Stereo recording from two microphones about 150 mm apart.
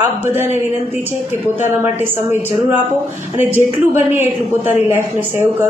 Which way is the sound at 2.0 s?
15° right (ahead or behind).